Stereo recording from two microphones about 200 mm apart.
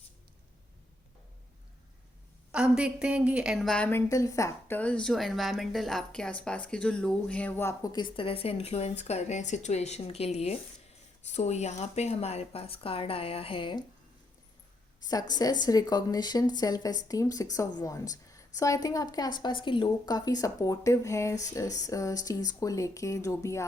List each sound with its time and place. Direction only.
2.5 s a woman's voice: 5° right (ahead or behind); by 13.8 s 25° left (ahead or behind)
15.3 s a woman's voice: 20° left (ahead or behind)